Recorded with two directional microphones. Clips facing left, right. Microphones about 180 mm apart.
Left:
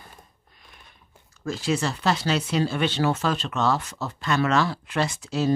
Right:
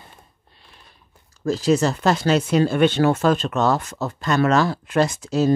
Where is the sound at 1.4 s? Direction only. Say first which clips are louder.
Right 7 dB; 40° right (ahead or behind).